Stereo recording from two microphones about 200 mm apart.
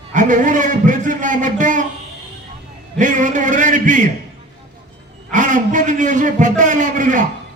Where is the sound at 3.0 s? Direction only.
40° right (ahead or behind).